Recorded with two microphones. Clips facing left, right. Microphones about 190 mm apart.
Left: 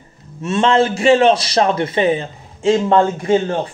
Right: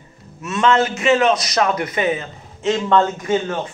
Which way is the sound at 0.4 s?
30° left (ahead or behind).